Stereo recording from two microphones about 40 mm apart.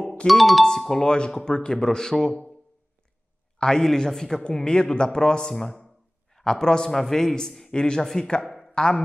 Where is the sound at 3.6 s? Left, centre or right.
Centre.